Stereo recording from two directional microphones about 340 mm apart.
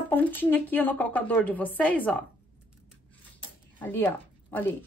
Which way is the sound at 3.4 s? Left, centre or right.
Centre.